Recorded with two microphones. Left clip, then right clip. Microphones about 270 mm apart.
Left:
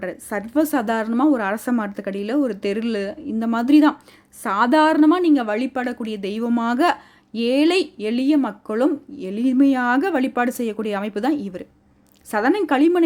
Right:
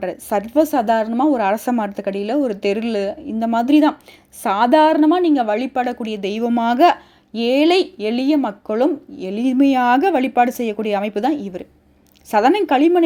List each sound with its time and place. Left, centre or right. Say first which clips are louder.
0.0 s a woman's voice: right 6 dB; centre